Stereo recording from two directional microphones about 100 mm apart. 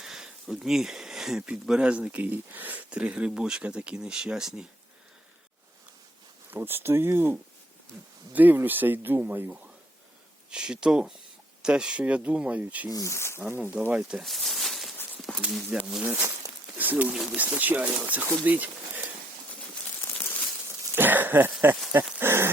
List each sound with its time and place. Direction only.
0.0 s speech: 5° right (ahead or behind)
6.5 s speech: 20° right (ahead or behind)
10.5 s speech: 10° right (ahead or behind)
12.9 s speech: 30° left (ahead or behind)
13.6 s speech: 15° right (ahead or behind); by 14.9 s centre (ahead or behind)
15.3 s speech: 10° left (ahead or behind)
15.7 s speech: 10° right (ahead or behind)
16.7 s a sound: 15° right (ahead or behind)
17.2 s speech: 15° right (ahead or behind)
20.1 s a sound: 15° left (ahead or behind)
20.7 s a sound: 20° right (ahead or behind)
22.2 s speech: 25° right (ahead or behind)